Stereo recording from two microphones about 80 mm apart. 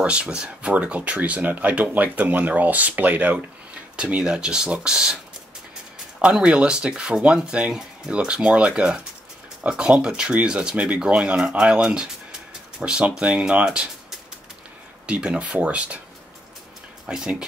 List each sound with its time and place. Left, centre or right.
0.0 s speech: centre
6.2 s speech: centre
15.0 s speech: centre
17.0 s speech: centre